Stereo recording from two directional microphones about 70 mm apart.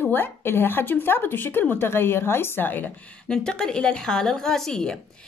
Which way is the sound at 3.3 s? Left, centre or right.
Centre.